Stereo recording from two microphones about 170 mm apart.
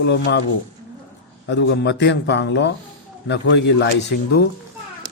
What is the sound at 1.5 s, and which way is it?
A man's voice, 90° left.